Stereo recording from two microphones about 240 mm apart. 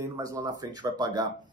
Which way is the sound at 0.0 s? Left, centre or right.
Centre.